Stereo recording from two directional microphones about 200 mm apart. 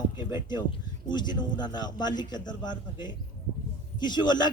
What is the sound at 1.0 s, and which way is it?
A man's voice, 20° left (ahead or behind).